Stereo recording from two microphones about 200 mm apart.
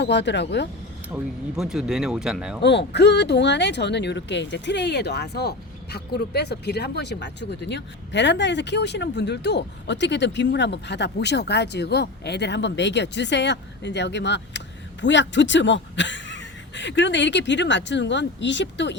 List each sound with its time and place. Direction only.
0.0 s speech: 60° left (ahead or behind)
1.1 s speech: centre (ahead or behind)
2.6 s speech: 60° left (ahead or behind)